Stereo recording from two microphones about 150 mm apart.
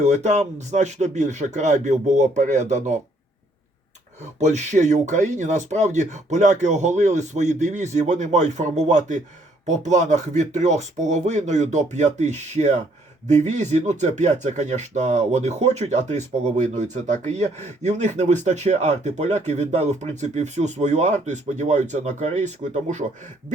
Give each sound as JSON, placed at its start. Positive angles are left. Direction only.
{"t": 0.0, "sound": "speech", "side_deg": -50}
{"t": 4.4, "sound": "speech", "side_deg": -50}